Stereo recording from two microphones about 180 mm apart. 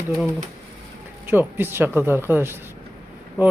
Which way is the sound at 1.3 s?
10° right (ahead or behind).